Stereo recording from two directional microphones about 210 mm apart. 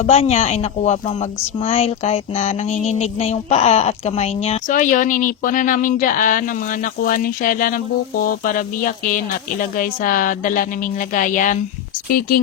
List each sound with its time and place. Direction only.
0.0 s speech: 30° left (ahead or behind)